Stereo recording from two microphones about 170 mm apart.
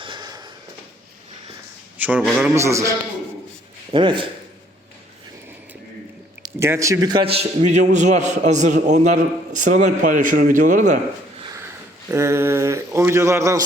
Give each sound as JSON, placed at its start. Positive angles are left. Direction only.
{"t": 0.0, "sound": "a sound", "side_deg": -25}
{"t": 2.0, "sound": "a man's voice", "side_deg": -10}
{"t": 2.6, "sound": "speech", "side_deg": -15}
{"t": 3.9, "sound": "a man's voice", "side_deg": -30}
{"t": 6.4, "sound": "speech", "side_deg": -15}
{"t": 7.3, "sound": "a man's voice", "side_deg": -40}
{"t": 12.1, "sound": "speech", "side_deg": -15}